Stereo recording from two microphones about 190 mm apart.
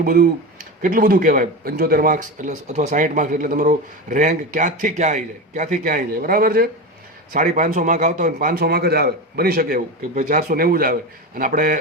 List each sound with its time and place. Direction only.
0.0 s speech: 50° right (ahead or behind)